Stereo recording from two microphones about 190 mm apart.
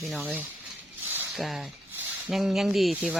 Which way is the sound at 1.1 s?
5° right (ahead or behind).